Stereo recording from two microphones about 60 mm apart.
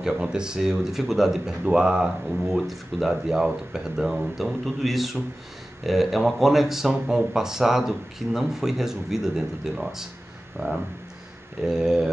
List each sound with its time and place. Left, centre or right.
0.0 s speech: centre
2.4 s speech: centre
10.6 s speech: right
11.8 s speech: centre